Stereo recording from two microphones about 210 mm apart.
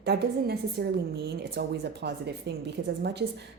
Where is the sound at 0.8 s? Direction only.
45° right (ahead or behind).